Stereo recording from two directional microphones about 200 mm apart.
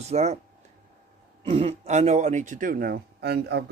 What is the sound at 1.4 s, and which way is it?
Speech, 30° right (ahead or behind).